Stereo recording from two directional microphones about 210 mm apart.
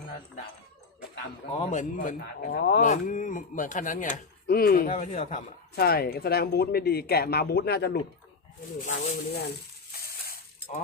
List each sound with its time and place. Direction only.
1.5 s speech: 35° left (ahead or behind)
5.7 s speech: 45° left (ahead or behind)
8.8 s speech: 35° left (ahead or behind)